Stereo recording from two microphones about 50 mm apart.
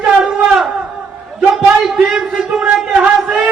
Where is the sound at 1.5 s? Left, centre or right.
Centre.